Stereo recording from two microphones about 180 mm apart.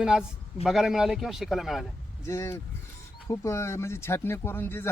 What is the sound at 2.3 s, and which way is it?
Speech, 15° left (ahead or behind).